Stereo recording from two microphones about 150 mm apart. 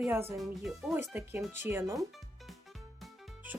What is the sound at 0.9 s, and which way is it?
Speech, 15° right (ahead or behind).